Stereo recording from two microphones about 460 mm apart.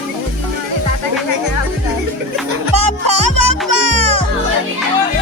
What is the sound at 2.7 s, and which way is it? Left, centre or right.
Music, right.